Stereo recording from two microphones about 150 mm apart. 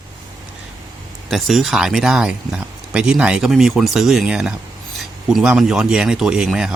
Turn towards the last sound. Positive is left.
turn(degrees=-5)  # may be behind; listen again after turning